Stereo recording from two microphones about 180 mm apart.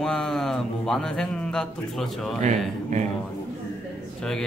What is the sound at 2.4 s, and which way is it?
Speech, 40° right (ahead or behind).